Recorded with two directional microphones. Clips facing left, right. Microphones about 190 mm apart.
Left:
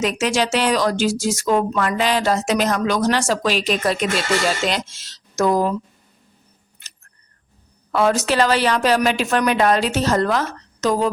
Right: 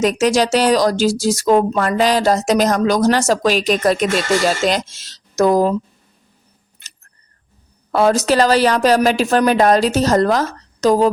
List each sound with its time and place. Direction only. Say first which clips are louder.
0.0 s speech: right 5 dB; 40° right (ahead or behind)
7.9 s speech: right 4 dB; 40° right (ahead or behind)